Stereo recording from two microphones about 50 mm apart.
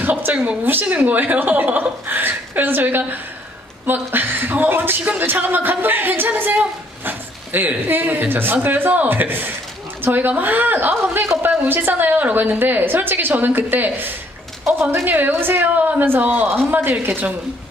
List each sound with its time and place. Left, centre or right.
0.0 s a woman's voice: right
14.7 s a woman's voice: right